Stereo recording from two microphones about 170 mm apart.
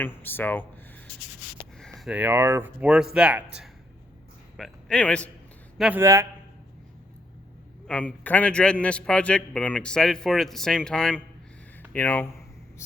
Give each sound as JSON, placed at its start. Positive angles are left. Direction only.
{"t": 0.0, "sound": "a man's voice", "side_deg": 10}
{"t": 1.8, "sound": "a man's voice", "side_deg": 0}
{"t": 5.7, "sound": "speech", "side_deg": -5}
{"t": 6.0, "sound": "speech", "side_deg": -15}
{"t": 7.9, "sound": "a man's voice", "side_deg": 10}